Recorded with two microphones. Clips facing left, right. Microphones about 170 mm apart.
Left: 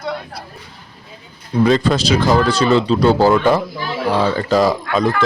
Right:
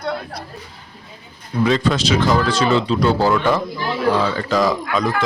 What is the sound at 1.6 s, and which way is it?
Speech, 35° left (ahead or behind).